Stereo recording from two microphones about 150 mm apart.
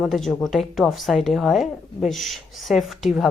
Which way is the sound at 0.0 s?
Centre (ahead or behind).